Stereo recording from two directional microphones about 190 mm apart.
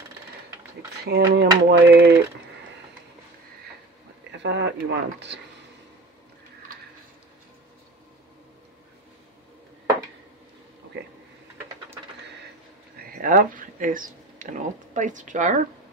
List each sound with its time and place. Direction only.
1.0 s speech: 60° right (ahead or behind)
4.4 s speech: 70° right (ahead or behind)
13.0 s speech: 50° right (ahead or behind)